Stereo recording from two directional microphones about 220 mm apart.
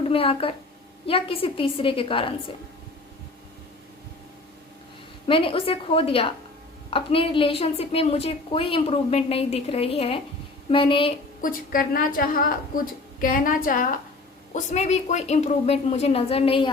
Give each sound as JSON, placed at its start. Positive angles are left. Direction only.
{"t": 0.1, "sound": "a woman's voice", "side_deg": 25}
{"t": 5.3, "sound": "a woman's voice", "side_deg": 25}
{"t": 11.3, "sound": "a woman's voice", "side_deg": 40}